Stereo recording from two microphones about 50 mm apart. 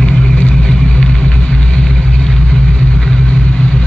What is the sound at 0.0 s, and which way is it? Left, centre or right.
Vehicle, left.